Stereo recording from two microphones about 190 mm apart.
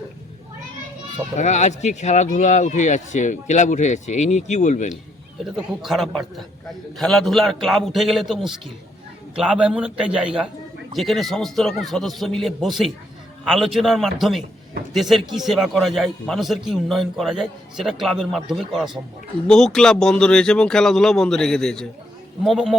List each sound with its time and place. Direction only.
1.4 s speech: 40° left (ahead or behind)
5.5 s a man's voice: centre (ahead or behind)